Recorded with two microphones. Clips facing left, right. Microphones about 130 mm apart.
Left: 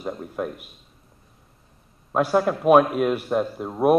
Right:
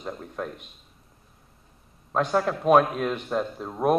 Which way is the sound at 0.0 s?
10° left (ahead or behind).